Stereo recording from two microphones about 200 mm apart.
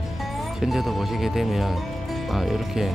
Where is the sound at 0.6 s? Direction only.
Centre (ahead or behind).